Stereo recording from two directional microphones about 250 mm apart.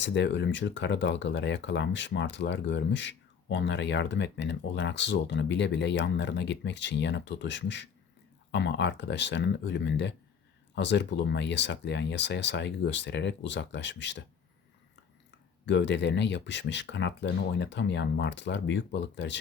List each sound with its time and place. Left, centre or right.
0.0 s speech: left
15.6 s speech: left